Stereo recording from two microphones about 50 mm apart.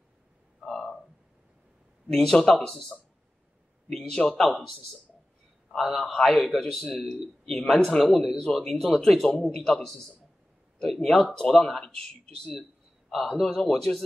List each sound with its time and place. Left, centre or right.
0.6 s a sound: centre
2.0 s speech: centre
4.3 s a man's voice: centre
8.0 s speech: centre
13.1 s speech: centre